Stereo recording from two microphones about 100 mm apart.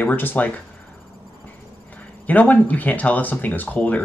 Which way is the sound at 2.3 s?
15° left (ahead or behind).